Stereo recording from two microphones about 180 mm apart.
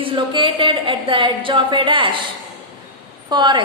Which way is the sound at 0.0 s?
30° right (ahead or behind).